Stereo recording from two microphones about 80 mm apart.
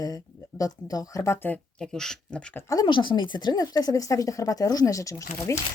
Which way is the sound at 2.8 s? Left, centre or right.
Left.